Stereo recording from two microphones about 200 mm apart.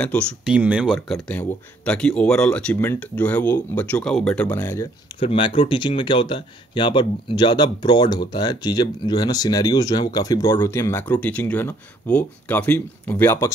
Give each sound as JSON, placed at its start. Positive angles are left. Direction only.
{"t": 0.0, "sound": "speech", "side_deg": 5}
{"t": 0.5, "sound": "speech", "side_deg": -5}
{"t": 5.2, "sound": "speech", "side_deg": 25}